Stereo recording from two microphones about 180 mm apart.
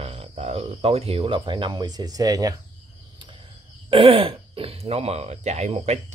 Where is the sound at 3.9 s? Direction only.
30° right (ahead or behind).